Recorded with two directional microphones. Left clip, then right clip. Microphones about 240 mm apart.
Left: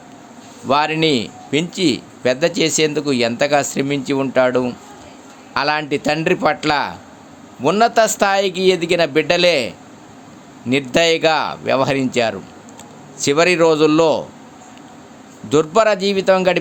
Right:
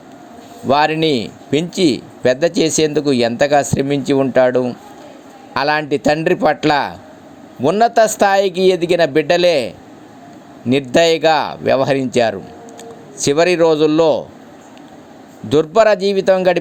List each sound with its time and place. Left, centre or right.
0.7 s a man's voice: centre
15.4 s a man's voice: centre